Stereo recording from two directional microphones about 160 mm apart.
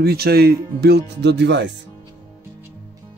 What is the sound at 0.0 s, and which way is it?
Speech, 80° right.